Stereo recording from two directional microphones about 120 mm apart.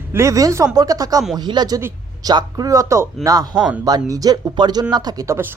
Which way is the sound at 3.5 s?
10° right (ahead or behind).